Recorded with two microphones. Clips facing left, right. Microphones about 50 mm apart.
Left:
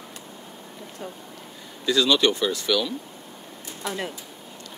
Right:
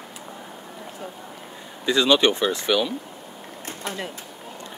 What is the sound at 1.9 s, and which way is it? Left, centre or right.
Speech, right.